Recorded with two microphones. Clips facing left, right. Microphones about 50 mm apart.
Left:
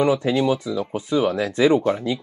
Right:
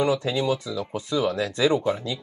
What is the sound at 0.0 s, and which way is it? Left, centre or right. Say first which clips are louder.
Speech: left 4 dB; left.